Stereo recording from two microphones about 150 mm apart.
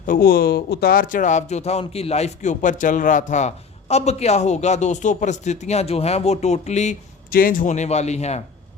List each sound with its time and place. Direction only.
0.0 s speech: 70° left (ahead or behind); by 6.9 s 50° left (ahead or behind)
7.3 s speech: 70° left (ahead or behind); by 8.4 s 50° left (ahead or behind)